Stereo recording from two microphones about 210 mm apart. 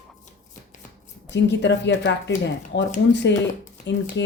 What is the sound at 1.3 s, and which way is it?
Speech, 55° left (ahead or behind).